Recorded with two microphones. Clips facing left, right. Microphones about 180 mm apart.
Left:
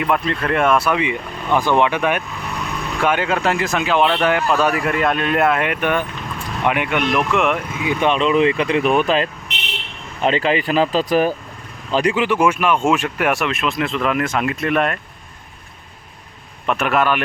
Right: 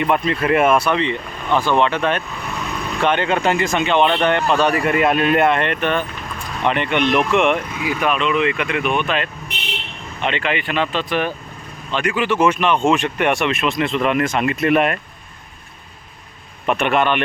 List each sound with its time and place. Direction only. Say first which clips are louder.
0.0 s speech: right 1 dB; centre (ahead or behind)
7.9 s speech: left 3 dB; 25° left (ahead or behind)
12.1 s speech: even; 15° left (ahead or behind); by 14.9 s 5° right (ahead or behind)
16.6 s speech: right 1 dB; centre (ahead or behind)